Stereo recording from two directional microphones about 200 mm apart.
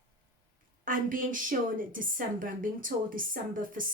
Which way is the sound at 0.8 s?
45° right (ahead or behind).